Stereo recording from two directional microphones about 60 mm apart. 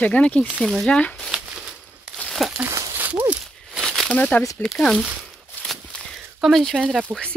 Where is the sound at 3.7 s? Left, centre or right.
Centre.